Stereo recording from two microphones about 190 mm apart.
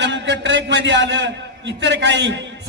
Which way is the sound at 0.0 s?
70° right (ahead or behind).